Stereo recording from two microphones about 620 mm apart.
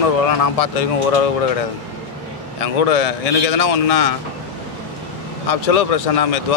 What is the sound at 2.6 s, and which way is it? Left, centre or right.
A man's voice, left.